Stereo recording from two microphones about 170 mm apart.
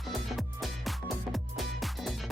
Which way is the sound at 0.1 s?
Centre (ahead or behind).